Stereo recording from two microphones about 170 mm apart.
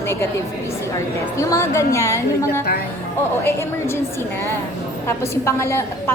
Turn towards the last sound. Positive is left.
turn(degrees=15)  # may be behind; listen again after turning